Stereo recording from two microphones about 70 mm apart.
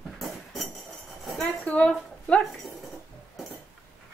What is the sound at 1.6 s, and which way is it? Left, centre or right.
Speech, centre.